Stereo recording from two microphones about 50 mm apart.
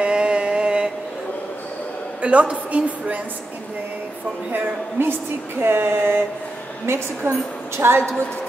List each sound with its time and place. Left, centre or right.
0.0 s mantra: right
2.2 s a woman's voice: right
4.5 s a woman's voice: right